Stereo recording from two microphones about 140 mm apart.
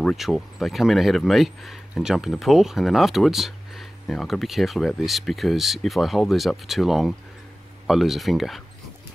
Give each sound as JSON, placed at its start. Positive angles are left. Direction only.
{"t": 0.0, "sound": "speech", "side_deg": 0}